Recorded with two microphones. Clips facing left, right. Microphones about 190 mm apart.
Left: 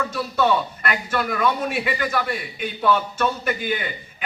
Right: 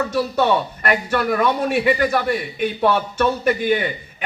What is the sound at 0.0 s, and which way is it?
A man's voice, 40° right (ahead or behind).